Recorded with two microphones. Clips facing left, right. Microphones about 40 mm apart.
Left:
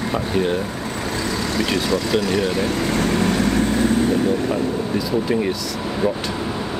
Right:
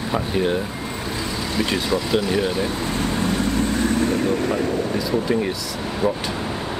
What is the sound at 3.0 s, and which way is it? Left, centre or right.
Vehicle, left.